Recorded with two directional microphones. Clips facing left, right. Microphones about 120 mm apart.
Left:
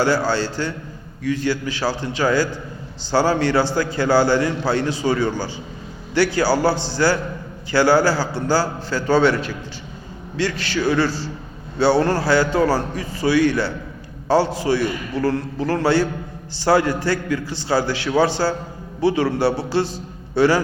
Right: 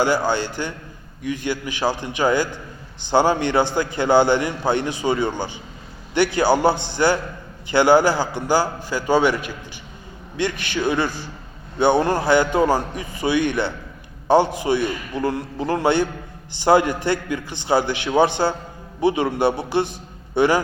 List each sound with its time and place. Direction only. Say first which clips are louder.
0.0 s a man's voice: left 1 dB; 15° right (ahead or behind)